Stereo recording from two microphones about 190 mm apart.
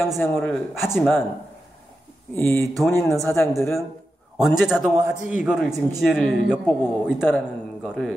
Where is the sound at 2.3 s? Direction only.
10° left (ahead or behind).